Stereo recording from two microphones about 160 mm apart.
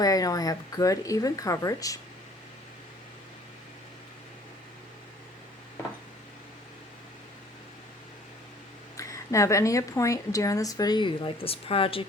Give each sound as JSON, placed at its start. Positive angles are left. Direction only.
{"t": 0.0, "sound": "a woman's voice", "side_deg": 20}
{"t": 9.0, "sound": "a woman's voice", "side_deg": 20}